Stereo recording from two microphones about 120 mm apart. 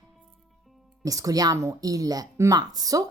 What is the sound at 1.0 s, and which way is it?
A woman's voice, 30° right (ahead or behind).